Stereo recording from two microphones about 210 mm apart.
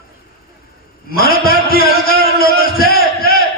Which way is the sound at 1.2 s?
45° left (ahead or behind).